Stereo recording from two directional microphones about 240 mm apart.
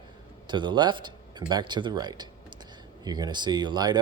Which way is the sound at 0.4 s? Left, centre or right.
Centre.